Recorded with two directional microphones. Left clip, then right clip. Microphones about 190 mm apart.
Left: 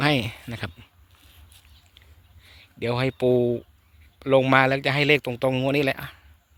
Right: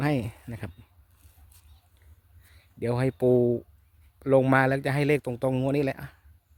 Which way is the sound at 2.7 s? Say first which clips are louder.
Left 3 dB; 20° right (ahead or behind).